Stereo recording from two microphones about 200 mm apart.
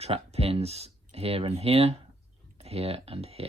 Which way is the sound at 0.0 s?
30° right (ahead or behind).